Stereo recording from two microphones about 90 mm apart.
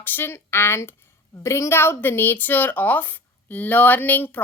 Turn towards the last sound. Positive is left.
turn(degrees=20)  # may be behind; listen again after turning